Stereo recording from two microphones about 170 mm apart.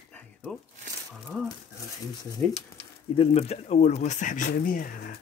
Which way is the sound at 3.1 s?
35° left (ahead or behind).